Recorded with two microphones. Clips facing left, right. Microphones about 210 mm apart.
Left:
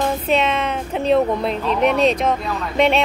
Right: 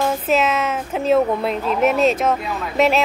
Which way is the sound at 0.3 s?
5° right (ahead or behind).